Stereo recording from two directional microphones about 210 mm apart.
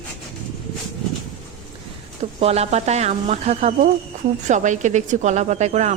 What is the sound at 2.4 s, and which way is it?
Speech, 30° right (ahead or behind).